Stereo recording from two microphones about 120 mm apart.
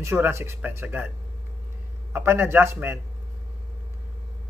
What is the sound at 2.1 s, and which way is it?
Speech, 20° right (ahead or behind).